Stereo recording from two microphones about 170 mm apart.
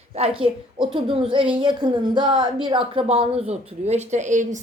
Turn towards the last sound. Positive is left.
turn(degrees=-45)  # may be behind; listen again after turning